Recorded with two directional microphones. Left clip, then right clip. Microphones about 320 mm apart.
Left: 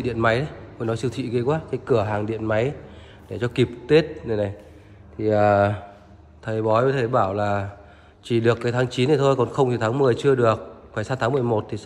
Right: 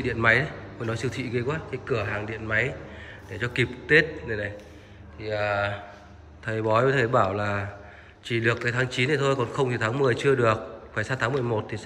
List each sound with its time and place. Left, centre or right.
0.0 s a man's voice: centre
6.4 s a man's voice: centre